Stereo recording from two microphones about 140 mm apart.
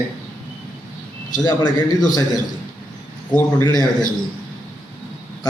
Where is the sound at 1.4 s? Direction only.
30° left (ahead or behind).